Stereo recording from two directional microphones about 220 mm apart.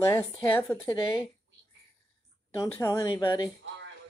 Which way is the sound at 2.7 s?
10° left (ahead or behind).